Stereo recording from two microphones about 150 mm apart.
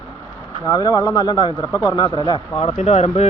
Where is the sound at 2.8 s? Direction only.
45° left (ahead or behind).